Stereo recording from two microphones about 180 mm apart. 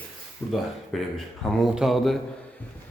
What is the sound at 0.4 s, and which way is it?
Speech, 15° left (ahead or behind).